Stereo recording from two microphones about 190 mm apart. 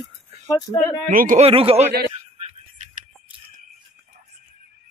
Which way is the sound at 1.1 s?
45° right (ahead or behind).